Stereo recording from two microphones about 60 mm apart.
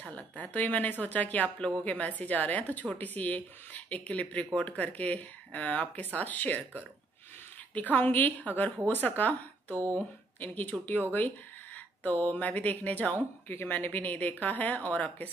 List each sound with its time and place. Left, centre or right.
0.0 s speech: left
7.9 s speech: left
10.4 s speech: left